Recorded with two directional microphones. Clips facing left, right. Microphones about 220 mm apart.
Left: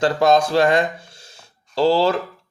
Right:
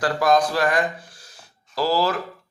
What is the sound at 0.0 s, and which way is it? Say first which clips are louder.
Speech: left 3 dB; 25° left (ahead or behind).